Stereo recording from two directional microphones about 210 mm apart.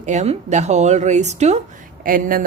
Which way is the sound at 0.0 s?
35° right (ahead or behind).